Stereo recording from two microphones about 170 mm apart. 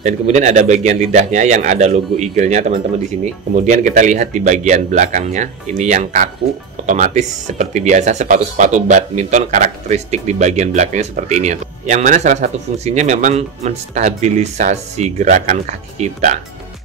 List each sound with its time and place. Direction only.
0.0 s speech: 45° right (ahead or behind)